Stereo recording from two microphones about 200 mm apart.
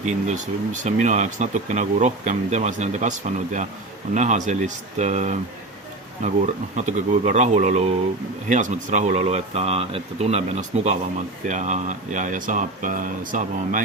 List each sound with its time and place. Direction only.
0.0 s speech: 35° right (ahead or behind)